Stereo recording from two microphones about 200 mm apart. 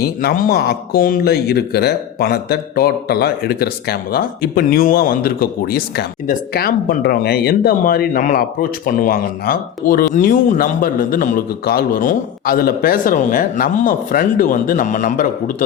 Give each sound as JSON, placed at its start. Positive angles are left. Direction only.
{"t": 0.0, "sound": "speech", "side_deg": 50}